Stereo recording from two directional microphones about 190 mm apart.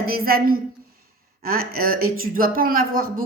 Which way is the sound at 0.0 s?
50° right (ahead or behind).